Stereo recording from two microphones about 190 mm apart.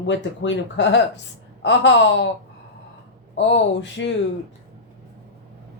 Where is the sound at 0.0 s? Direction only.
75° left (ahead or behind).